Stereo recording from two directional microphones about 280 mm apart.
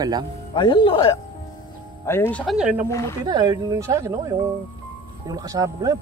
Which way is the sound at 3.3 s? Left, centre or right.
Centre.